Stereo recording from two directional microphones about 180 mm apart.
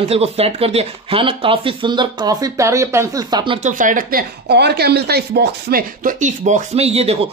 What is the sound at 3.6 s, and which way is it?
Speech, 45° right (ahead or behind).